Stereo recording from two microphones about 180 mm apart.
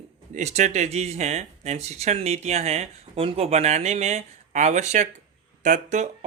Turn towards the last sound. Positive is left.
turn(degrees=-40)  # may be behind; listen again after turning